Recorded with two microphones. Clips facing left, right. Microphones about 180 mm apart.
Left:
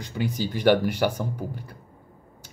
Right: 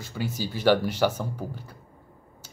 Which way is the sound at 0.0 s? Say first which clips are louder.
Left 3 dB; 15° left (ahead or behind).